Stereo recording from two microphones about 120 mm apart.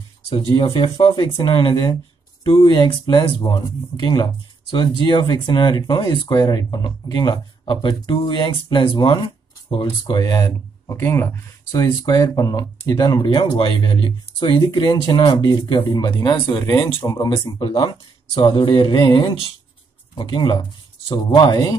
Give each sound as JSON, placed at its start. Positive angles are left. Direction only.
{"t": 0.7, "sound": "speech", "side_deg": 45}
{"t": 11.8, "sound": "speech", "side_deg": 35}
{"t": 17.0, "sound": "speech", "side_deg": 30}